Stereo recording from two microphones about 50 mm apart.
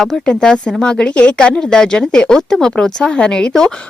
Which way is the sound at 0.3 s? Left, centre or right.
Centre.